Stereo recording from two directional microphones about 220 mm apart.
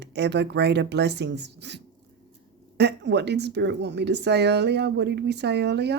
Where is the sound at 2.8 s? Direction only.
50° right (ahead or behind).